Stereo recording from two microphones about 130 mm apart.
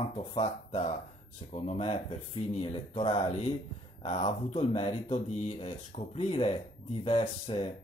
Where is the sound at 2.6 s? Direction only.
45° left (ahead or behind).